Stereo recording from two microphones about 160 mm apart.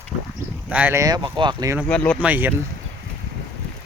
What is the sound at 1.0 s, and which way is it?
Speech, 25° right (ahead or behind).